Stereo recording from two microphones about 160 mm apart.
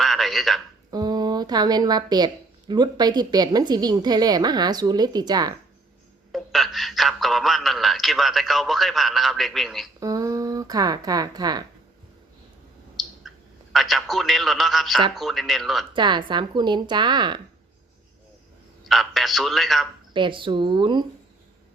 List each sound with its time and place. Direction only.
0.0 s a sound: centre (ahead or behind)
0.9 s a woman's voice: 25° right (ahead or behind)
6.3 s speech: centre (ahead or behind)
10.0 s speech: 20° right (ahead or behind)
13.7 s speech: centre (ahead or behind)
15.9 s a woman's voice: 30° right (ahead or behind)
18.9 s speech: centre (ahead or behind)
20.1 s speech: 30° right (ahead or behind)